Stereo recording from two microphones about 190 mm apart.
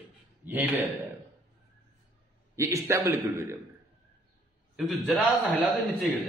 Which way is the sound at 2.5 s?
15° right (ahead or behind).